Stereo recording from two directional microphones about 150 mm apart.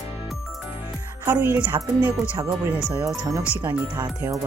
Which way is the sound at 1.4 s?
10° right (ahead or behind).